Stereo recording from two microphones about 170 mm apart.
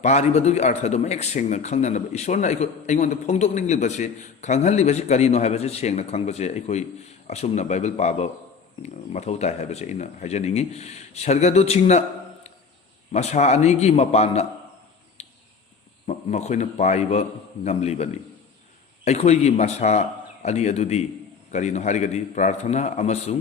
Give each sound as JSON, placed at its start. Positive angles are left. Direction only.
{"t": 0.0, "sound": "a man's voice", "side_deg": 40}
{"t": 15.2, "sound": "a sound", "side_deg": 40}
{"t": 16.0, "sound": "a man's voice", "side_deg": 40}